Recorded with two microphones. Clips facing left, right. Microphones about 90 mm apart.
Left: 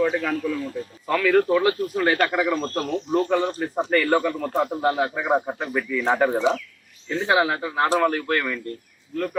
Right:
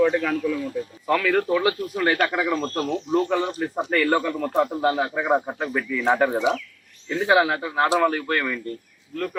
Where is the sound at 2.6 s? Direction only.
25° right (ahead or behind).